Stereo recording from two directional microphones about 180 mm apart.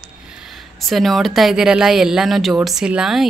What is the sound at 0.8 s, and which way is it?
Speech, centre (ahead or behind).